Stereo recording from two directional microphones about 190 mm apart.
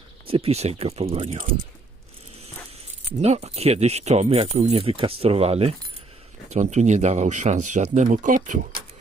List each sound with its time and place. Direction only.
0.3 s speech: 30° right (ahead or behind)
3.1 s speech: 35° right (ahead or behind)